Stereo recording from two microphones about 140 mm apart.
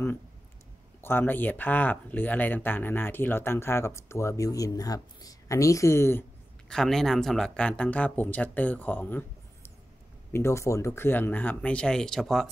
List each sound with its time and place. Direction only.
1.0 s speech: 15° left (ahead or behind)
6.7 s speech: 5° left (ahead or behind)